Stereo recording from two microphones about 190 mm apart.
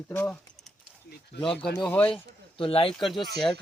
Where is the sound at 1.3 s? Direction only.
60° left (ahead or behind).